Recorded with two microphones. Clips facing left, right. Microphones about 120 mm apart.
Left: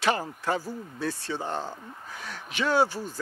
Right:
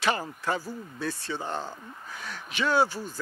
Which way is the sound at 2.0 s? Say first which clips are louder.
Right 1 dB; 40° left (ahead or behind).